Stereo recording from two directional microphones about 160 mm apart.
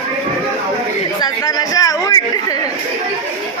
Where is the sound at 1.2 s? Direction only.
25° left (ahead or behind).